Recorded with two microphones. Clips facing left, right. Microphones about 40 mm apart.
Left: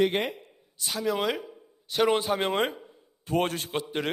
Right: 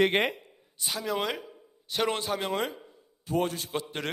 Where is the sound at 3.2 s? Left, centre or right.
Left.